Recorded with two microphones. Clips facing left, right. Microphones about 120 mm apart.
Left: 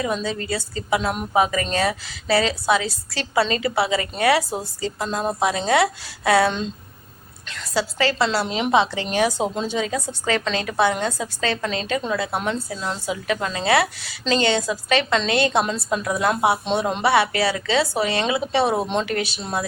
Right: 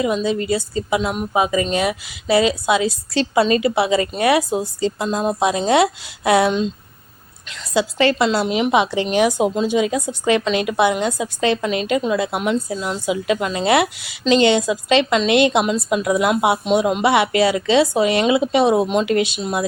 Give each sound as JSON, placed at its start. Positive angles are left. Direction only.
{"t": 0.0, "sound": "a woman's voice", "side_deg": -15}
{"t": 7.5, "sound": "a woman's voice", "side_deg": -20}
{"t": 13.2, "sound": "a woman's voice", "side_deg": -20}